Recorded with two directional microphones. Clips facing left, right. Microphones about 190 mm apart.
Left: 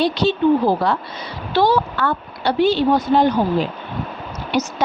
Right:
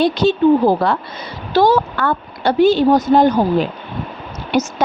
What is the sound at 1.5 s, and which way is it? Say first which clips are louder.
A woman's voice: right 3 dB; 45° right (ahead or behind).